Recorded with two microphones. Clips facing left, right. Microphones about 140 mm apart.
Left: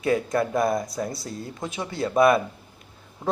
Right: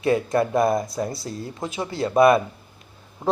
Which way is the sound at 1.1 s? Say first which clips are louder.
Right 2 dB; centre (ahead or behind).